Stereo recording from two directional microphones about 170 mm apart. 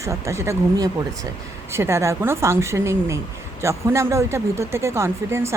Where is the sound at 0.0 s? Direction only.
15° right (ahead or behind).